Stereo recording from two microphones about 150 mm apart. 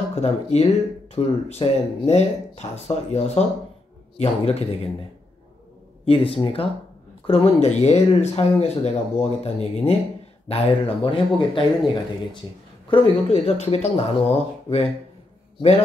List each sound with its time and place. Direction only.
0.1 s speech: 45° left (ahead or behind)
6.0 s a man's voice: 40° left (ahead or behind)